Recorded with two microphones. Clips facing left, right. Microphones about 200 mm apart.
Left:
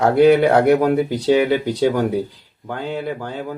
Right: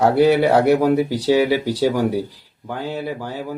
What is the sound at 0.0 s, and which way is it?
Speech, 10° right (ahead or behind).